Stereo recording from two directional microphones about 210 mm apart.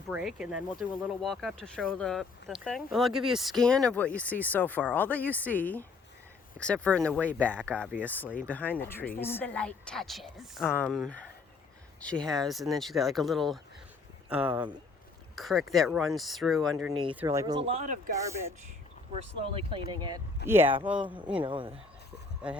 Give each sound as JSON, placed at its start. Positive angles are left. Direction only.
{"t": 0.1, "sound": "speech", "side_deg": -5}
{"t": 16.9, "sound": "speech", "side_deg": -25}
{"t": 18.2, "sound": "speech", "side_deg": -15}
{"t": 19.9, "sound": "speech", "side_deg": -20}
{"t": 20.5, "sound": "speech", "side_deg": -10}
{"t": 21.4, "sound": "speech", "side_deg": -25}